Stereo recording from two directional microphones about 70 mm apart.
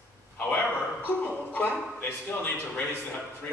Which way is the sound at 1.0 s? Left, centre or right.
Left.